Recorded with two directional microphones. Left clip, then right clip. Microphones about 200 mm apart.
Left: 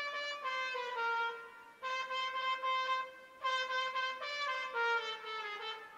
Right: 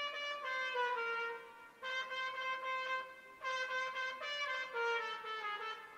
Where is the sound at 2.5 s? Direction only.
20° right (ahead or behind).